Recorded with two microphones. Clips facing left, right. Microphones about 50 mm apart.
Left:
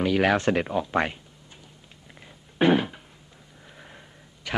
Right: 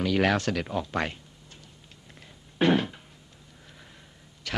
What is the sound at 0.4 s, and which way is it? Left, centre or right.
Speech, left.